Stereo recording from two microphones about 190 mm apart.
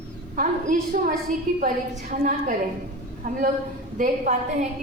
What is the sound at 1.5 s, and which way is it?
A woman's voice, 45° right (ahead or behind).